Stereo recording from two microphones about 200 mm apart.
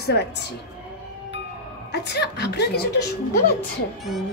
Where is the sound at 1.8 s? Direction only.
55° left (ahead or behind).